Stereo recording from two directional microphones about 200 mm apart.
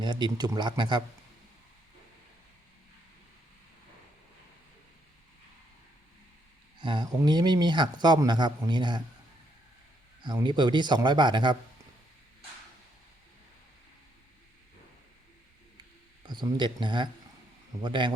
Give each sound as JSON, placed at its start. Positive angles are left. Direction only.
{"t": 0.0, "sound": "a man's voice", "side_deg": -20}
{"t": 6.7, "sound": "a man's voice", "side_deg": -25}
{"t": 10.2, "sound": "a man's voice", "side_deg": -20}
{"t": 16.2, "sound": "a man's voice", "side_deg": -20}